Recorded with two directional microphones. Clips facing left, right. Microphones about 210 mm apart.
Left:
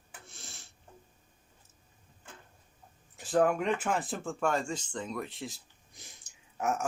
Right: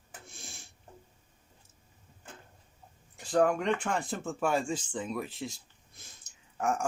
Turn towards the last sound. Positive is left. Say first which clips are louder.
# right 1 dB
turn(degrees=5)  # may be behind; listen again after turning